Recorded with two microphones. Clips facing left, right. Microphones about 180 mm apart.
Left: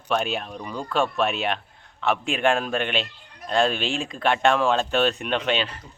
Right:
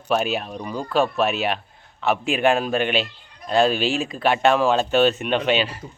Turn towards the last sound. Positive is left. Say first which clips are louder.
# right 4 dB
turn(degrees=-5)  # may be behind; listen again after turning